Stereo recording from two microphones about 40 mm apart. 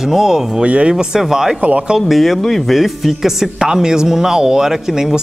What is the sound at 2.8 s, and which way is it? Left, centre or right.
Speech, centre.